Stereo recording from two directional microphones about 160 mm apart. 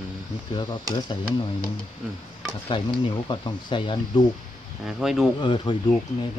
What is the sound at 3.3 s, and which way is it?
Speech, 30° left (ahead or behind).